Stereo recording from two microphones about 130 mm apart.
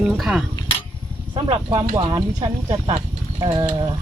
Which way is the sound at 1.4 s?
40° right (ahead or behind).